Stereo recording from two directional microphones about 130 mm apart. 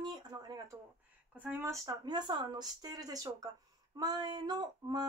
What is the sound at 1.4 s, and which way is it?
Speech, 20° right (ahead or behind).